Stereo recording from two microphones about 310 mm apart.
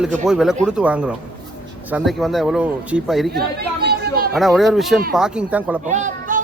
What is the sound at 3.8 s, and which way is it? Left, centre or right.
Chatter, right.